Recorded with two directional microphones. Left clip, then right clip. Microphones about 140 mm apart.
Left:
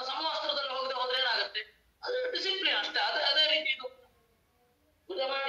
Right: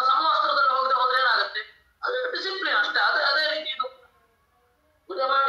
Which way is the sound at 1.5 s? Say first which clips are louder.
Right 5 dB; 25° left (ahead or behind).